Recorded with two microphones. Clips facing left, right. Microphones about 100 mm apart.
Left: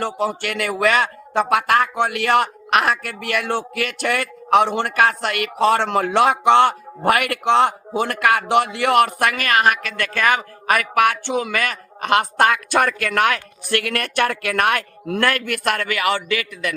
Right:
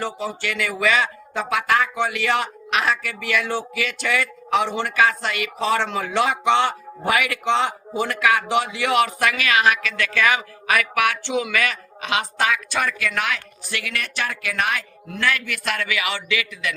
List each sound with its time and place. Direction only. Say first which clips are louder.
0.0 s a woman's voice: left 4 dB; 60° left (ahead or behind)